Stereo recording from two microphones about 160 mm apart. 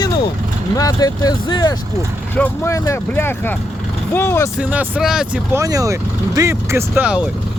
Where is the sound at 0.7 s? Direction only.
20° left (ahead or behind).